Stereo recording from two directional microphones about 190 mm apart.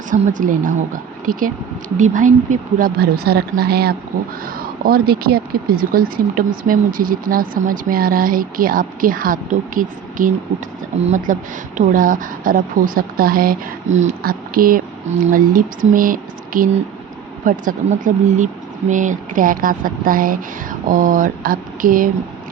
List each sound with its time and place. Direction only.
0.1 s speech: 45° right (ahead or behind)